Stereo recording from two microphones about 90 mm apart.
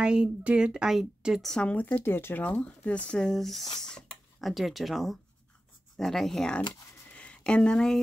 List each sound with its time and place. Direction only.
0.0 s a woman's voice: 10° right (ahead or behind)
1.5 s speech: 10° left (ahead or behind)
3.6 s speech: 50° left (ahead or behind)
3.9 s speech: centre (ahead or behind)
7.1 s a sound: 15° left (ahead or behind)